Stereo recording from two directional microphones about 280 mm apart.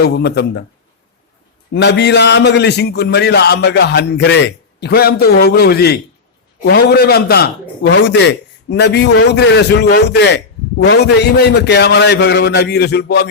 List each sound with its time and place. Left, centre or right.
0.0 s a man's voice: left
1.7 s a man's voice: left